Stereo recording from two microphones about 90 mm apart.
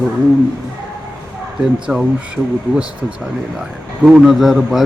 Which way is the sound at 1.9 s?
10° right (ahead or behind).